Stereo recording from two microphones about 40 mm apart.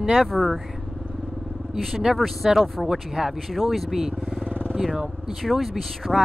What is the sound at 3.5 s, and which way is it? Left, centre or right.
Speech, centre.